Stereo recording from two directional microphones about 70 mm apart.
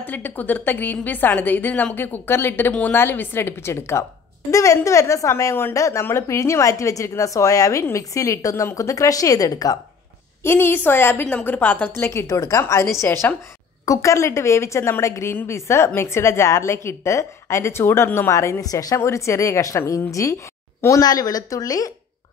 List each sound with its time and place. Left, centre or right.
0.0 s a woman's voice: left
5.3 s a woman's voice: left
10.4 s a woman's voice: left
12.0 s a woman's voice: left
18.6 s speech: left
18.9 s a woman's voice: left
21.0 s speech: left